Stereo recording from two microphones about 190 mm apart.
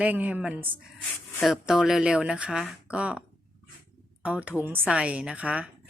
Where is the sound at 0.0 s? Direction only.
10° right (ahead or behind).